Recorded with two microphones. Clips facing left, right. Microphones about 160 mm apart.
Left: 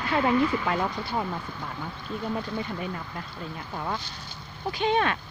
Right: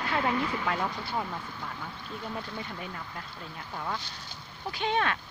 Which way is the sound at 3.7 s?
25° left (ahead or behind).